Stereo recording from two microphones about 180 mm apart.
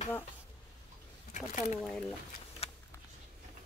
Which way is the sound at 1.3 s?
45° left (ahead or behind).